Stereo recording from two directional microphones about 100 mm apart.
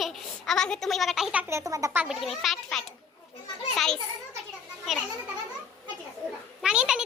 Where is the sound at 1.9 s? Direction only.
5° right (ahead or behind).